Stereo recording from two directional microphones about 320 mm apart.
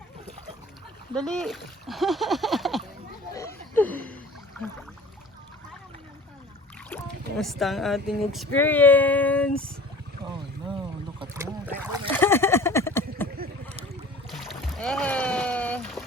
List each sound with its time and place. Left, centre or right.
1.1 s speech: centre
3.3 s a sound: centre
6.9 s speech: centre
11.2 s boat: centre
12.2 s a sound: centre
13.3 s boat: right
14.3 s boat: centre